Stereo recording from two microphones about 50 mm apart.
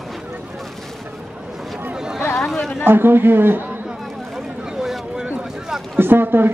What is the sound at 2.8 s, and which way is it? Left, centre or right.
Speech, right.